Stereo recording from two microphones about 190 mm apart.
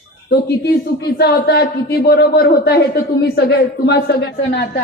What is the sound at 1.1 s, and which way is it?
Speech, 55° left (ahead or behind).